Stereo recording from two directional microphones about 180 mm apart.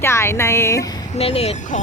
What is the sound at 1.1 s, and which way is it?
Speech, 35° left (ahead or behind).